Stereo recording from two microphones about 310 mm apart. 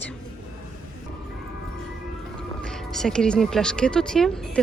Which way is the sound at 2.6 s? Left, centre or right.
Centre.